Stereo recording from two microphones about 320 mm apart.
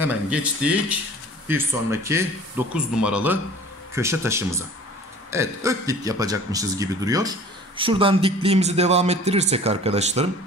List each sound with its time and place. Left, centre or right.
0.3 s speech: centre